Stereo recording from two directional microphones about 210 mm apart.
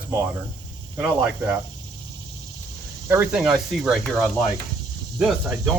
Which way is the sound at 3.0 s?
10° right (ahead or behind).